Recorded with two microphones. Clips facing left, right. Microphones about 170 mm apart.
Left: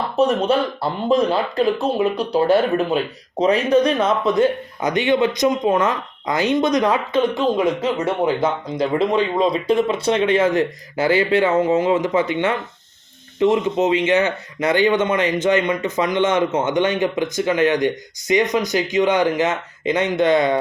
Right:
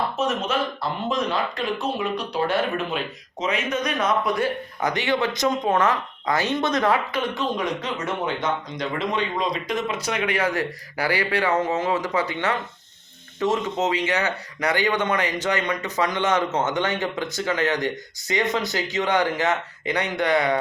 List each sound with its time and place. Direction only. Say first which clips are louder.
0.2 s speech: left 11 dB; 35° left (ahead or behind)